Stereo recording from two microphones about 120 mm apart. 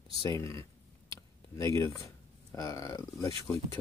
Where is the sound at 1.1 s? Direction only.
25° left (ahead or behind).